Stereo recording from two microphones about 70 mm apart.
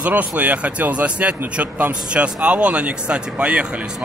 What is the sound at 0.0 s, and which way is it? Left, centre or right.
Speech, right.